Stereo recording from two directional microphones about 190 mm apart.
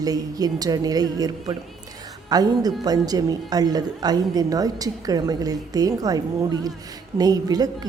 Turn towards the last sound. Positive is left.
turn(degrees=-20)  # may be behind; listen again after turning